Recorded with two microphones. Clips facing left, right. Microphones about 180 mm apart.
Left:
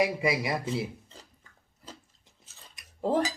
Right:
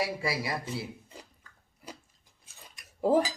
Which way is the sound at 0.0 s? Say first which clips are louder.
Left 5 dB; 20° left (ahead or behind).